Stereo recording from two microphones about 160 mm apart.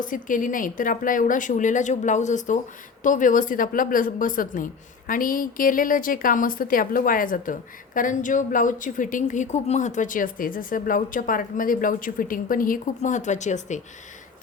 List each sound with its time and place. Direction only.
0.0 s a woman's voice: 55° left (ahead or behind)